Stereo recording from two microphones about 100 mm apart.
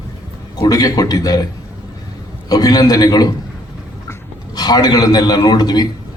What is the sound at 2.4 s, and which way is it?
Speech, 40° left (ahead or behind).